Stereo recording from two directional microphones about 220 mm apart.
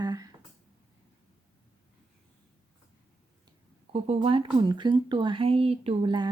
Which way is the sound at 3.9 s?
25° right (ahead or behind).